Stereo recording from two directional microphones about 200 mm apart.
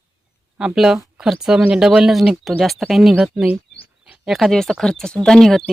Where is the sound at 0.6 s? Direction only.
5° right (ahead or behind).